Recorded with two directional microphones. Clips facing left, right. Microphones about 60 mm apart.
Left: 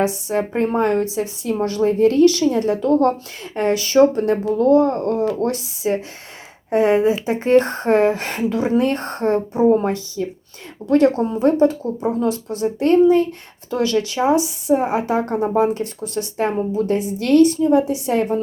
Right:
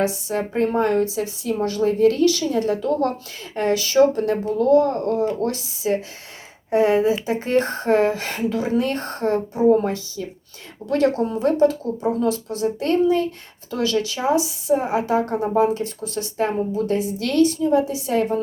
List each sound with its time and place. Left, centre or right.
0.0 s speech: left
9.6 s speech: left